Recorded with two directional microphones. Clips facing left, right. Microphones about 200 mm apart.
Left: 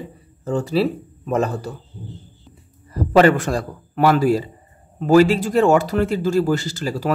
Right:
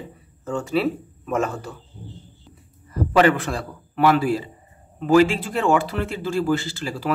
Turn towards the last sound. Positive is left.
turn(degrees=40)  # may be behind; listen again after turning